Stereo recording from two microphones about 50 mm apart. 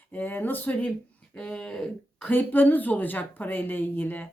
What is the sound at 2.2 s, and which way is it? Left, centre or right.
A woman's voice, left.